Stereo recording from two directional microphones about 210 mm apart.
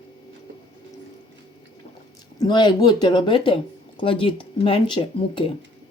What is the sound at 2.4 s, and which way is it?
Speech, 20° left (ahead or behind).